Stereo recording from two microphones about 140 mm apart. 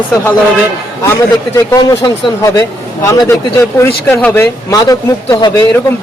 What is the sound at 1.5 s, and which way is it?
Speech, 25° left (ahead or behind).